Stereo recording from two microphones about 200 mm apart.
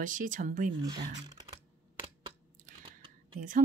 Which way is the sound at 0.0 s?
40° right (ahead or behind).